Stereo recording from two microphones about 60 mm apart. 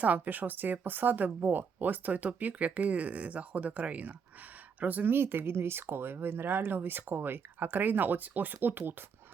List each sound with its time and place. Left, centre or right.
0.0 s speech: right